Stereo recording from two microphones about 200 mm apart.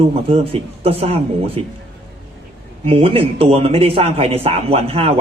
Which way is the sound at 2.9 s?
30° right (ahead or behind).